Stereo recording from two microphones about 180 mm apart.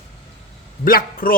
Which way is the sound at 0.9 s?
50° left (ahead or behind).